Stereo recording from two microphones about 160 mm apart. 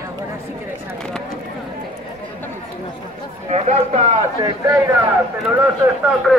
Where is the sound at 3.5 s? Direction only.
45° right (ahead or behind).